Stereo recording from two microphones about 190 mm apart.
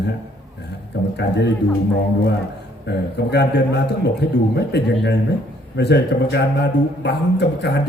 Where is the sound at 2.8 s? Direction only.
60° left (ahead or behind).